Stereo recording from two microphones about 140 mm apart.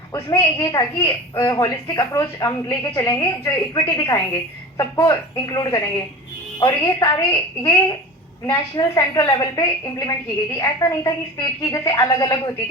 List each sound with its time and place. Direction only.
0.1 s a woman's voice: 25° left (ahead or behind)